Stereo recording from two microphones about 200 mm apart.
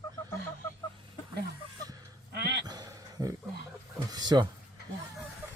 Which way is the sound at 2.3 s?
55° right (ahead or behind).